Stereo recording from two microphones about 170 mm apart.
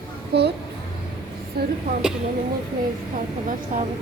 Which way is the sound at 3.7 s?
50° right (ahead or behind).